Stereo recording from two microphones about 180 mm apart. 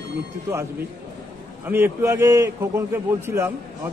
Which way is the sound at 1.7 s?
10° right (ahead or behind).